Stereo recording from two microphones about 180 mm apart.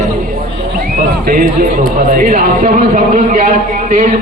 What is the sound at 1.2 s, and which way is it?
A man's voice, 50° right (ahead or behind).